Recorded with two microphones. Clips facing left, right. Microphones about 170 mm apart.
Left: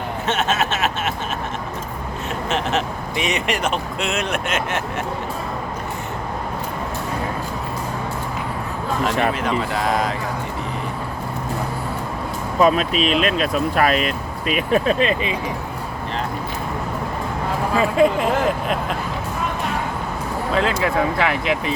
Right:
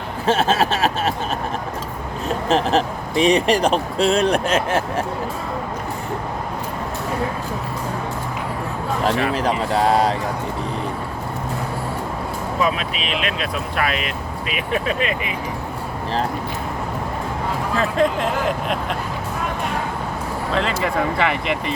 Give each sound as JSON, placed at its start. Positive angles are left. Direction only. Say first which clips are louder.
{"t": 0.3, "sound": "a sound", "louder": "right 4 dB", "side_deg": -35}
{"t": 2.5, "sound": "speech", "louder": "right 5 dB", "side_deg": -35}
{"t": 9.3, "sound": "speech", "louder": "right 2 dB", "side_deg": -35}
{"t": 12.5, "sound": "speech", "louder": "left 7 dB", "side_deg": 40}
{"t": 17.7, "sound": "speech", "louder": "left 3 dB", "side_deg": 5}
{"t": 20.5, "sound": "speech", "louder": "left 2 dB", "side_deg": 0}